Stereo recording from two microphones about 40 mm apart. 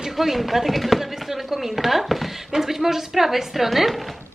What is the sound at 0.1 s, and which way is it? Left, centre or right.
Speech, centre.